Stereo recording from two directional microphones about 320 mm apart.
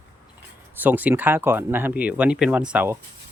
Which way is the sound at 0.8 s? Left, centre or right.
Centre.